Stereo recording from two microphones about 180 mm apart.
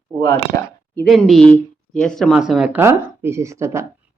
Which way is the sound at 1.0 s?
Centre (ahead or behind).